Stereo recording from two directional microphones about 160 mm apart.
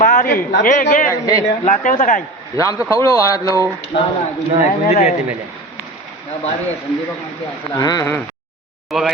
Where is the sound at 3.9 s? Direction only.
75° left (ahead or behind).